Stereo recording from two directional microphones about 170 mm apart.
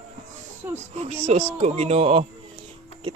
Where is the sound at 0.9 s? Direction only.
40° right (ahead or behind).